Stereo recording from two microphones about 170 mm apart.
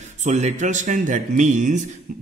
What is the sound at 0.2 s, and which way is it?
A man's voice, 40° right (ahead or behind).